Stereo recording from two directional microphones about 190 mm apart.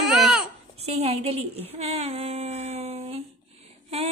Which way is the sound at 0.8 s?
35° right (ahead or behind).